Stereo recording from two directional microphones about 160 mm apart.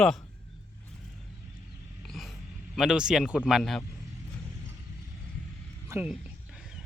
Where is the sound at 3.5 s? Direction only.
Centre (ahead or behind).